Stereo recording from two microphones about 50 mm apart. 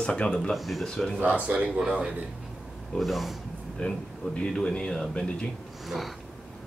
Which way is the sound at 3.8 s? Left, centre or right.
Centre.